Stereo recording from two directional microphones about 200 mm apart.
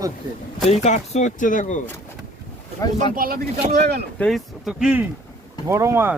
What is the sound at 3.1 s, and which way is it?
Speech, 45° right (ahead or behind).